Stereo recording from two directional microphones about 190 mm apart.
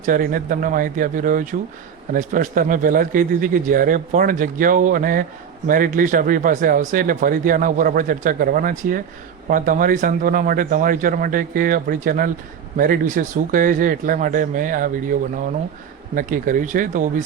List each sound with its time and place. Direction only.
0.0 s speech: 45° right (ahead or behind)
16.1 s speech: 45° right (ahead or behind)